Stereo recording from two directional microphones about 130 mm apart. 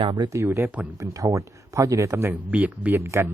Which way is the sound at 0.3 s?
20° right (ahead or behind).